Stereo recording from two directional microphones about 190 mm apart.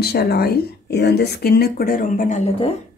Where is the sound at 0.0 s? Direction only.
55° left (ahead or behind); by 2.7 s 40° left (ahead or behind).